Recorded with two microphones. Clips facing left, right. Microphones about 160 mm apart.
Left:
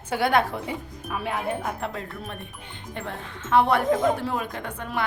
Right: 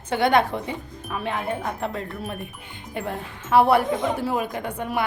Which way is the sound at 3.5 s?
10° right (ahead or behind).